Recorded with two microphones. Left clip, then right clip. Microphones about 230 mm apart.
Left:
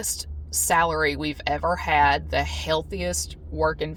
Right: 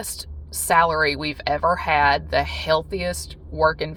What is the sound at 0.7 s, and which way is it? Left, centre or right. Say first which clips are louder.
Speech: right 4 dB; right.